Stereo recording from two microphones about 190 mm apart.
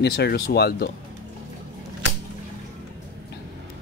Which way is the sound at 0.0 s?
60° left (ahead or behind).